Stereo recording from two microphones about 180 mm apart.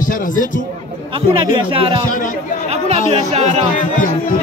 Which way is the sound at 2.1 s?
45° left (ahead or behind).